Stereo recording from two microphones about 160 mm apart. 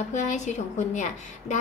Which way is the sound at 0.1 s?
45° left (ahead or behind).